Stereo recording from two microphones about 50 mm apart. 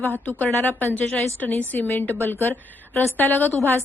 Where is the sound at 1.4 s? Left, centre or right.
Left.